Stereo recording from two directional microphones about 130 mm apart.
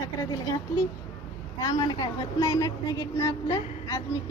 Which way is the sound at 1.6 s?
30° left (ahead or behind).